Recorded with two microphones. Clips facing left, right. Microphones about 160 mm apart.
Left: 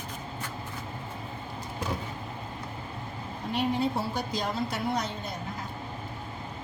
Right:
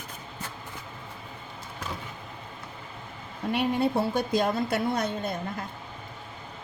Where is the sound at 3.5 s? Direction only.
60° right (ahead or behind).